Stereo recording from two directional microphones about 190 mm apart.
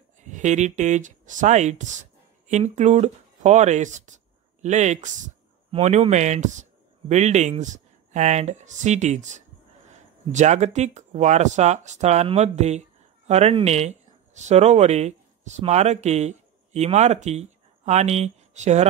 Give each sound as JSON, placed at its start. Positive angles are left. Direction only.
{"t": 0.3, "sound": "speech", "side_deg": -40}